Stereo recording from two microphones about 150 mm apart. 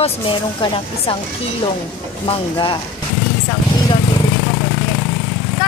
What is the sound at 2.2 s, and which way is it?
Speech, 35° left (ahead or behind).